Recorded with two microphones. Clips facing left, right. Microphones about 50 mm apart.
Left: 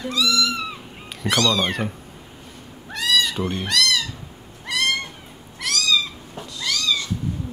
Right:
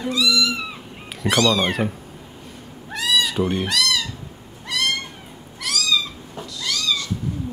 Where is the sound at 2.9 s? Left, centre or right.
Centre.